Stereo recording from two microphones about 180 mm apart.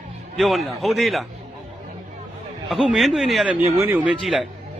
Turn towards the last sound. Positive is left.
turn(degrees=-5)  # may be behind; listen again after turning